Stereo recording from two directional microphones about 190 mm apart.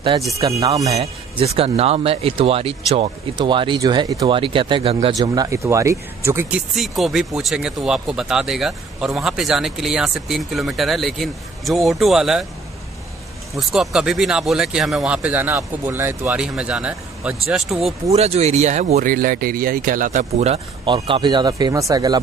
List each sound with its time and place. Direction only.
0.4 s speech: 20° right (ahead or behind)
0.9 s speech: 30° right (ahead or behind); by 6.6 s 15° right (ahead or behind)
6.7 s speech: centre (ahead or behind)
13.6 s speech: centre (ahead or behind)
18.1 s speech: 35° right (ahead or behind)